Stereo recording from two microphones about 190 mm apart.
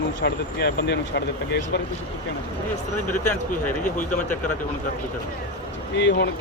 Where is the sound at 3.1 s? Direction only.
40° left (ahead or behind).